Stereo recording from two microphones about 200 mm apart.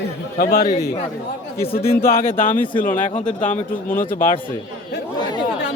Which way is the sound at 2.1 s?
45° left (ahead or behind).